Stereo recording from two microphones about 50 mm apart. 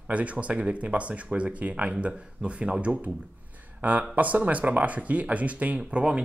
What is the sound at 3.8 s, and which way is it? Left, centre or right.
Speech, right.